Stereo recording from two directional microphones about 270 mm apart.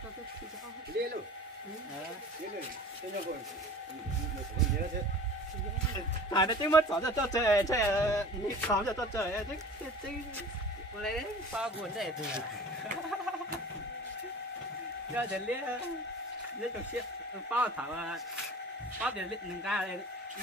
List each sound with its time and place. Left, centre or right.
1.0 s a sound: right
6.3 s speech: centre
11.0 s speech: centre
15.1 s speech: centre
17.5 s speech: centre